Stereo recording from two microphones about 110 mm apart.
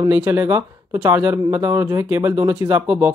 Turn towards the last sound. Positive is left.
turn(degrees=-15)  # may be behind; listen again after turning